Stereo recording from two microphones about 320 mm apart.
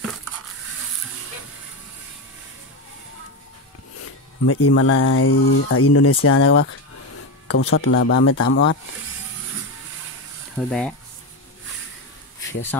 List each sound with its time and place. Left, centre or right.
4.5 s speech: left
10.6 s speech: centre